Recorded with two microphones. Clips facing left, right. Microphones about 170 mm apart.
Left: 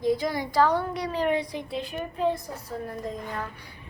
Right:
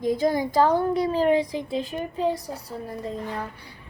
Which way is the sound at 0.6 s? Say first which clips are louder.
Right 3 dB; 30° right (ahead or behind).